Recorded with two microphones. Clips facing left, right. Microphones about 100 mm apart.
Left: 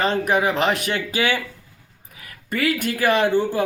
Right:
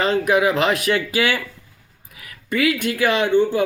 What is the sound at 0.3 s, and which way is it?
Speech, 35° left (ahead or behind).